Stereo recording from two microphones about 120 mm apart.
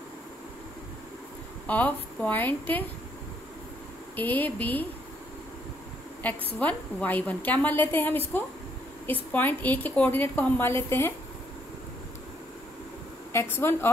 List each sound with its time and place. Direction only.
1.7 s a woman's voice: 15° left (ahead or behind)
4.2 s a woman's voice: 15° left (ahead or behind)
6.6 s a woman's voice: 10° left (ahead or behind)
13.3 s a woman's voice: 20° left (ahead or behind)